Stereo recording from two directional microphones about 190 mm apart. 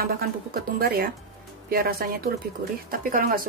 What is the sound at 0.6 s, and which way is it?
Speech, 50° right (ahead or behind).